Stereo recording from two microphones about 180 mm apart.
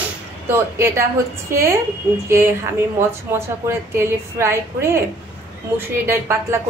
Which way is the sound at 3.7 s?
15° right (ahead or behind).